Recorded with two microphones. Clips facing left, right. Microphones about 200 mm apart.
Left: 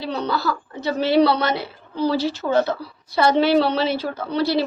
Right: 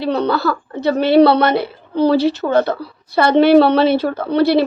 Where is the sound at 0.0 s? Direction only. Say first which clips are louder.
Right 7 dB; 60° right (ahead or behind).